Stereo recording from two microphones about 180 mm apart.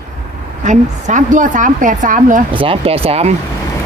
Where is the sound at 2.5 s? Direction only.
30° right (ahead or behind).